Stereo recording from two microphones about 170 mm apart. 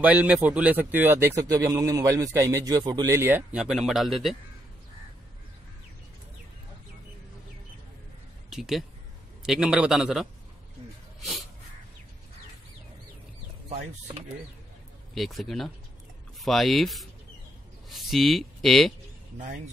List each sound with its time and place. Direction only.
0.0 s a man's voice: 10° right (ahead or behind)
8.5 s a man's voice: centre (ahead or behind)
15.1 s a man's voice: centre (ahead or behind)
19.3 s speech: 50° right (ahead or behind)